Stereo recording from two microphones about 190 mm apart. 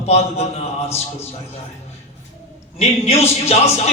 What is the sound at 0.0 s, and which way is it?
Speech, 35° left (ahead or behind).